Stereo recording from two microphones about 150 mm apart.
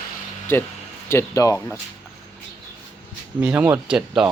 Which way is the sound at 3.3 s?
10° right (ahead or behind).